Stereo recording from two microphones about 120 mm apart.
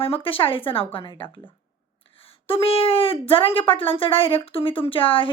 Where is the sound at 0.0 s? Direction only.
50° left (ahead or behind).